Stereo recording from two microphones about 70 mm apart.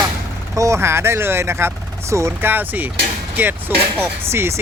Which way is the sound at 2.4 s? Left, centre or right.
Right.